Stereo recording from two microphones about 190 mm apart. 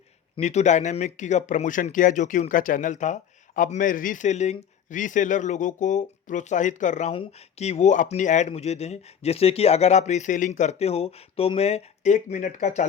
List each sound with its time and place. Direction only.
0.3 s speech: 35° left (ahead or behind)